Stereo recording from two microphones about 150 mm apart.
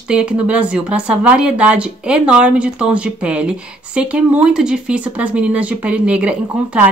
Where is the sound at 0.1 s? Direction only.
5° right (ahead or behind).